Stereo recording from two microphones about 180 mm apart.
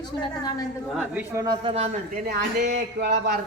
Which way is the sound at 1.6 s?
35° right (ahead or behind).